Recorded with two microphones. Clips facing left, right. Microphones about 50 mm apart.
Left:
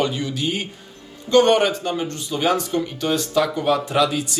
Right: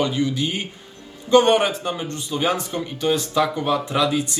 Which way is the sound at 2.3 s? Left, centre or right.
Centre.